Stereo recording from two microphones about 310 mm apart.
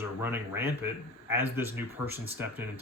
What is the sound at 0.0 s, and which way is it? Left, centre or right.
Speech, centre.